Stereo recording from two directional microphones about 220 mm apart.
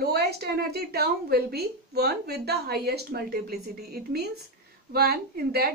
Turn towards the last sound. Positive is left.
turn(degrees=-45)  # may be behind; listen again after turning